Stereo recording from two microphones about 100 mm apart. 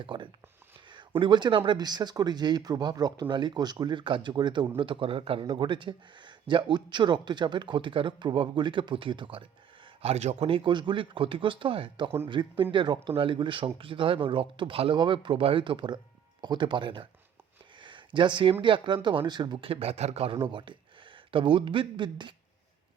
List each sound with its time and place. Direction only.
0.0 s speech: 55° right (ahead or behind)
4.8 s speech: 60° right (ahead or behind)
5.5 s speech: 55° right (ahead or behind)
10.0 s speech: 70° right (ahead or behind)
17.8 s a sound: 55° right (ahead or behind)
18.6 s speech: 55° right (ahead or behind)
19.7 s a man's voice: 85° right; by 22.4 s 55° right (ahead or behind)